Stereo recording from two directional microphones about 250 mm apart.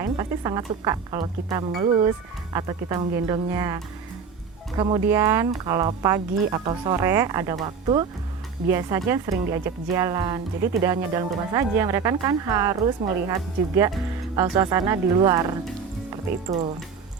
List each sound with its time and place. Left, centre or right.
0.0 s speech: centre
4.8 s speech: centre
14.3 s speech: centre